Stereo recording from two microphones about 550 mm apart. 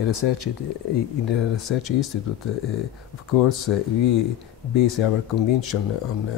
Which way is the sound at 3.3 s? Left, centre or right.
Left.